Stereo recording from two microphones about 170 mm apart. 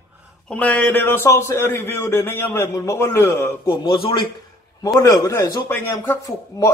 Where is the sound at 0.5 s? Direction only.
10° left (ahead or behind).